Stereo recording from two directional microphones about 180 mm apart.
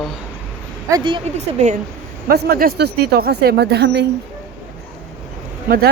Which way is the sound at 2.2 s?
60° right (ahead or behind).